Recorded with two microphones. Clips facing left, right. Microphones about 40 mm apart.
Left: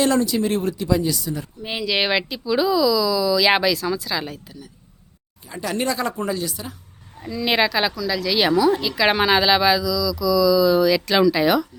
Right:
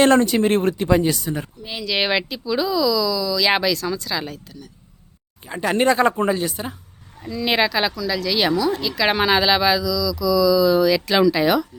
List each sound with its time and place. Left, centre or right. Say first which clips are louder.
0.0 s speech: right 4 dB; right
1.8 s speech: even; centre
5.5 s speech: right 6 dB; right
7.2 s speech: even; centre